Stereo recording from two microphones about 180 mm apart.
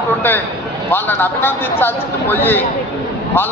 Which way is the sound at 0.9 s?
10° left (ahead or behind).